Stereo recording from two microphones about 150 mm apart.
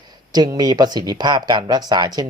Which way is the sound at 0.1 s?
25° right (ahead or behind).